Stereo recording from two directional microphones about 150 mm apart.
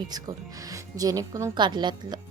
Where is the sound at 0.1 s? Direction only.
25° right (ahead or behind).